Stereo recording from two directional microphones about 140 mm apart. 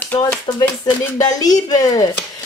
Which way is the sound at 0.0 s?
10° left (ahead or behind).